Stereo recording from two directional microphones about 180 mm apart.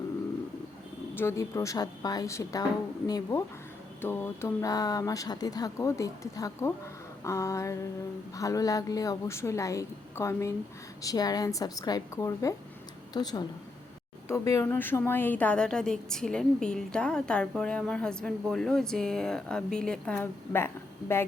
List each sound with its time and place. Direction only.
1.1 s a woman's voice: 15° left (ahead or behind)